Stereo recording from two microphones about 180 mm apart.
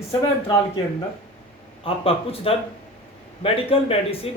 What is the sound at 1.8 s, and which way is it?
Speech, 30° left (ahead or behind).